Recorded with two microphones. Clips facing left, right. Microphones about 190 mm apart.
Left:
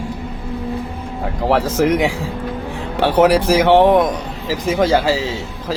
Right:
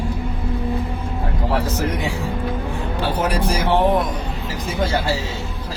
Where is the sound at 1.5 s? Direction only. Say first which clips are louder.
Left 8 dB; 90° left.